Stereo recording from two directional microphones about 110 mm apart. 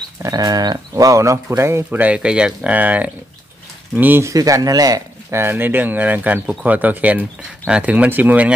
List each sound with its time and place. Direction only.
0.2 s speech: 35° right (ahead or behind); by 4.3 s 15° right (ahead or behind)
4.3 s speech: 30° right (ahead or behind)
5.4 s speech: 20° right (ahead or behind)